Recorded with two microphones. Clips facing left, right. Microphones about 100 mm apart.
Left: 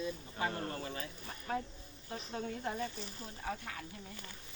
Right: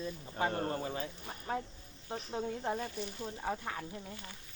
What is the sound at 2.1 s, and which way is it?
Speech, 25° right (ahead or behind).